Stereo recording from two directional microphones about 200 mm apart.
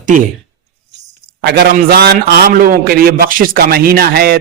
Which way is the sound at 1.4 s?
55° right (ahead or behind).